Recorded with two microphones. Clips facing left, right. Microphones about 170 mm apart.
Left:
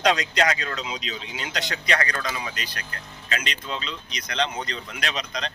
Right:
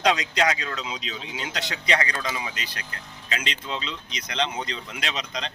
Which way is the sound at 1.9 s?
20° right (ahead or behind).